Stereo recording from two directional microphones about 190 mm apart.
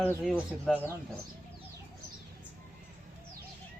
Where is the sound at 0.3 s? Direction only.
5° left (ahead or behind).